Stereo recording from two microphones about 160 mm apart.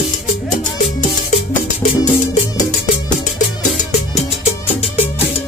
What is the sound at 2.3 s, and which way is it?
Music, 55° left (ahead or behind).